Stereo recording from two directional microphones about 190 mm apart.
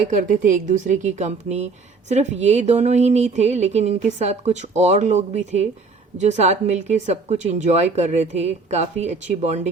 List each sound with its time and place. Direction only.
0.1 s a woman's voice: 45° right (ahead or behind)